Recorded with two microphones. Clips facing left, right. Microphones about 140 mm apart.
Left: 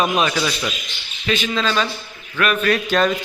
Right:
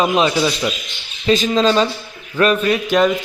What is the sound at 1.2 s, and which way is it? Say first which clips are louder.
A man's voice: right 7 dB; 35° right (ahead or behind).